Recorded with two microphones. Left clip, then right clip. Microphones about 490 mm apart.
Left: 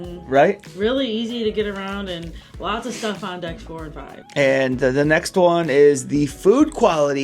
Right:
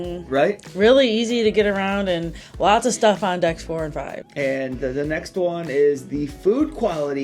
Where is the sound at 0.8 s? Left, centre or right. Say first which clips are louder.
Right 6 dB; right.